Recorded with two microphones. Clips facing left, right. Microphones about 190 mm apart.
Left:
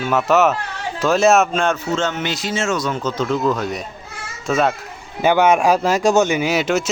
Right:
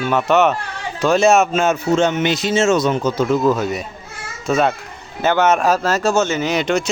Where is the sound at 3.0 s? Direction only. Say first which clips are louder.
Right 3 dB; 10° right (ahead or behind).